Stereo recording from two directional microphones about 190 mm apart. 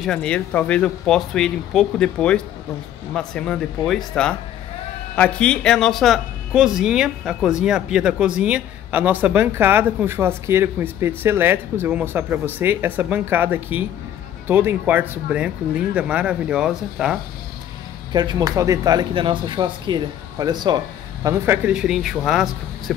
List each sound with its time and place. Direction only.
0.0 s speech: 5° left (ahead or behind)
18.1 s speech: 20° right (ahead or behind); by 22.9 s centre (ahead or behind)